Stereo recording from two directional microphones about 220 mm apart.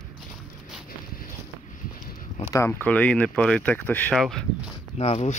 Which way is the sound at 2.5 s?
10° left (ahead or behind).